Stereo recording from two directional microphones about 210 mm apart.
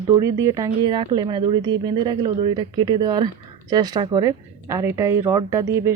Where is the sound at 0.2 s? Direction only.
15° right (ahead or behind).